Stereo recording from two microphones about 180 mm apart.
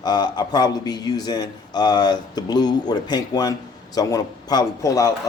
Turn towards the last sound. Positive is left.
turn(degrees=20)  # may be behind; listen again after turning